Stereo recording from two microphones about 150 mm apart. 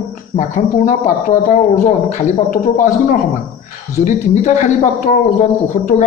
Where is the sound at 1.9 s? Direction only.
55° left (ahead or behind).